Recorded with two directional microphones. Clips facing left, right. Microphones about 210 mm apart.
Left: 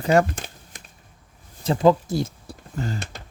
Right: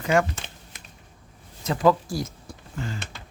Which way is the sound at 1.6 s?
25° left (ahead or behind).